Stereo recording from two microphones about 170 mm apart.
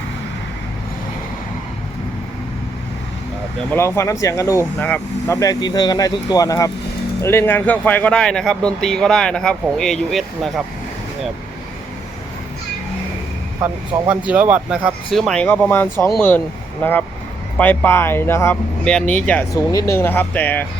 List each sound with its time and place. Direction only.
3.7 s speech: 15° left (ahead or behind)
14.1 s speech: 10° right (ahead or behind); by 20.7 s 10° left (ahead or behind)